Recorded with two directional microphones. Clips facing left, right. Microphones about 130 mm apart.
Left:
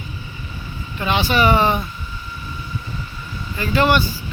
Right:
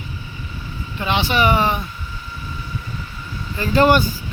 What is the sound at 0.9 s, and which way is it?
Speech, 20° right (ahead or behind).